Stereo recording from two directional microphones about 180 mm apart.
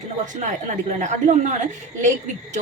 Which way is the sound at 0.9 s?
40° right (ahead or behind).